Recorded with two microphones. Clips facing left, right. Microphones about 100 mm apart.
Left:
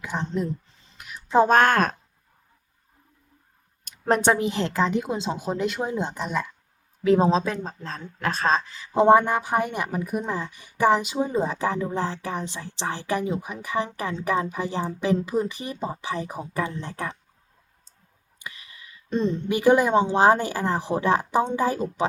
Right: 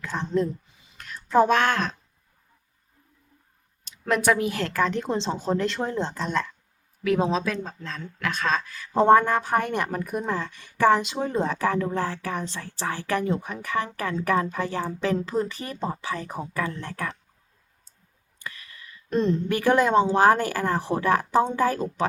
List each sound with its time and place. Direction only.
0.0 s a sound: 15° left (ahead or behind)
0.7 s a sound: 10° right (ahead or behind)
0.9 s a sound: 10° left (ahead or behind)
1.5 s a woman's voice: 45° left (ahead or behind)
4.0 s speech: 30° left (ahead or behind); by 6.5 s 10° left (ahead or behind)
7.0 s speech: 30° left (ahead or behind)
8.6 s speech: 20° left (ahead or behind)
18.3 s clicking: 15° left (ahead or behind)
19.1 s a woman's voice: centre (ahead or behind)
19.5 s speech: 15° left (ahead or behind)